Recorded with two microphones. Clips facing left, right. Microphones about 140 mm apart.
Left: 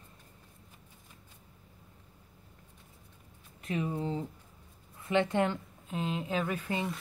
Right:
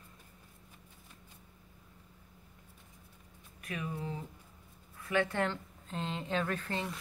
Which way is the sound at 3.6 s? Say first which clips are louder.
Left 6 dB; 25° left (ahead or behind).